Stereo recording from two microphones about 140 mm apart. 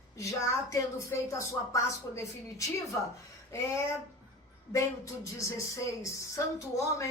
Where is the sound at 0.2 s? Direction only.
20° left (ahead or behind).